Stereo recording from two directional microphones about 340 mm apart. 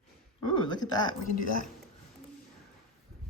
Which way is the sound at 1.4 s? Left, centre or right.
Left.